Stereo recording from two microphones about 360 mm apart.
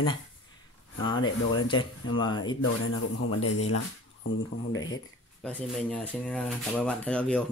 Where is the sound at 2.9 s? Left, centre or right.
Left.